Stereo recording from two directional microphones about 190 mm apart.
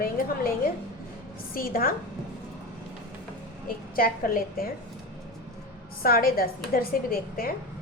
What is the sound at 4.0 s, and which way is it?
Speech, 50° left (ahead or behind).